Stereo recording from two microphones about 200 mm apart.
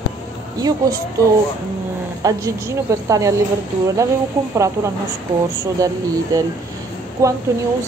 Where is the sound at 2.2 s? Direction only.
15° right (ahead or behind).